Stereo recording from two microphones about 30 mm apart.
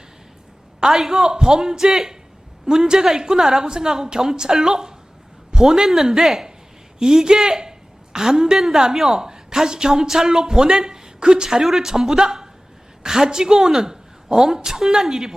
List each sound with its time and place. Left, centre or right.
0.8 s a man's voice: centre
8.5 s a woman's voice: centre
9.2 s a woman's voice: right